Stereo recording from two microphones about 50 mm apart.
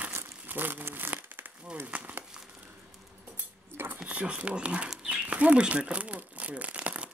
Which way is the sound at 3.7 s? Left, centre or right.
Right.